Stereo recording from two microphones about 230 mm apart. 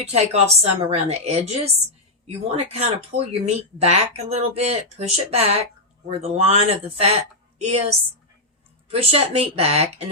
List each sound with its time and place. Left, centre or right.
0.0 s speech: right